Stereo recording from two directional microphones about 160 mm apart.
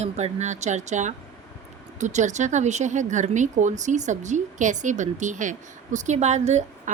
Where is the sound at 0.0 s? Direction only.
45° right (ahead or behind).